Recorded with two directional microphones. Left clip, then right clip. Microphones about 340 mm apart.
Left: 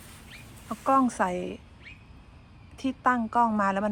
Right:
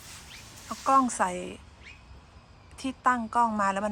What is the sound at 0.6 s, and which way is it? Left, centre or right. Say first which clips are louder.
Speech: right 1 dB; centre.